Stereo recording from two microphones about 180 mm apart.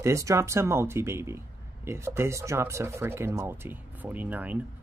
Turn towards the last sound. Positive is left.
turn(degrees=-10)  # may be behind; listen again after turning